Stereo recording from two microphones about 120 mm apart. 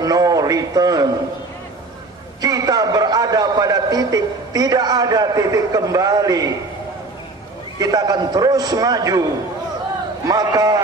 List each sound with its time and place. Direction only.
0.0 s a man's voice: 30° right (ahead or behind)
2.4 s a man's voice: 30° right (ahead or behind)
7.8 s a man's voice: 30° right (ahead or behind)
10.2 s a man's voice: 30° right (ahead or behind)